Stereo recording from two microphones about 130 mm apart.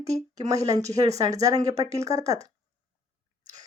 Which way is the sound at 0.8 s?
60° right (ahead or behind).